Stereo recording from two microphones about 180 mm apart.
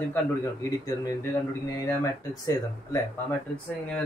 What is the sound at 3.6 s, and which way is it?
Speech, 5° left (ahead or behind).